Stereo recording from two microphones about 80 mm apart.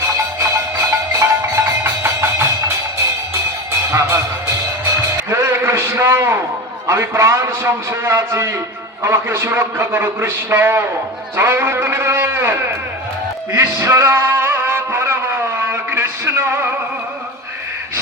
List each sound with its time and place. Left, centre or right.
0.5 s music: right
5.3 s a sound: right
6.8 s a man's voice: right
13.5 s music: right